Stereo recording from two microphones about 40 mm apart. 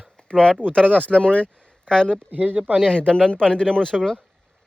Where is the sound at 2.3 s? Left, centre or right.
Right.